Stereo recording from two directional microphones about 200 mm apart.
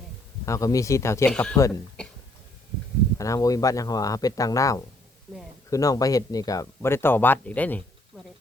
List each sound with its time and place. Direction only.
0.4 s speech: 15° left (ahead or behind)
3.2 s speech: 15° left (ahead or behind)